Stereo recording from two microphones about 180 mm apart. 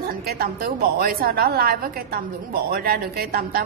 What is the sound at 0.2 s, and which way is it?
A woman's voice, 60° right (ahead or behind).